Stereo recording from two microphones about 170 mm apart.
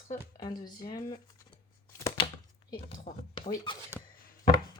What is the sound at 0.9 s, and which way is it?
Speech, 25° left (ahead or behind).